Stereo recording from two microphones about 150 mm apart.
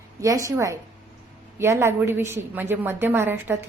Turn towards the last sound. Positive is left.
turn(degrees=-15)  # may be behind; listen again after turning